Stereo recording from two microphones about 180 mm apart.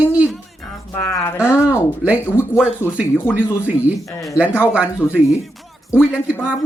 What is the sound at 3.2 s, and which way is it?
Speech, 15° left (ahead or behind).